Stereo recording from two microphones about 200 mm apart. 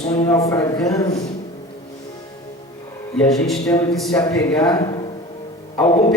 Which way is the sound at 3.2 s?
Centre (ahead or behind).